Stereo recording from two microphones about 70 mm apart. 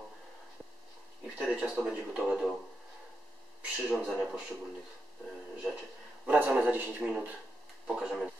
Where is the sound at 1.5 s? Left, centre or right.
Centre.